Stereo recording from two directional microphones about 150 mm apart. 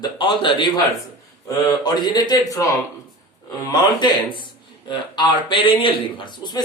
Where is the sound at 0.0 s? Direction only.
30° left (ahead or behind).